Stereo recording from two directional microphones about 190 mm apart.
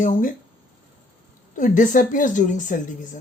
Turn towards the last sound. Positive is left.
turn(degrees=40)  # may be behind; listen again after turning